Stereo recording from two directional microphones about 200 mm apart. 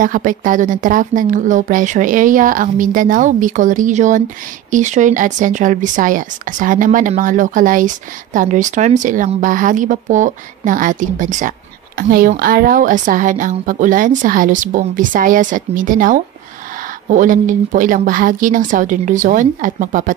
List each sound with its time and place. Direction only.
0.0 s speech: 40° right (ahead or behind)